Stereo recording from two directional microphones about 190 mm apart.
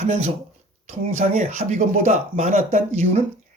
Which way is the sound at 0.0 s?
35° right (ahead or behind).